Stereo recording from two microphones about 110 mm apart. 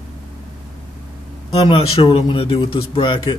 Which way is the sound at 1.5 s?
60° left (ahead or behind).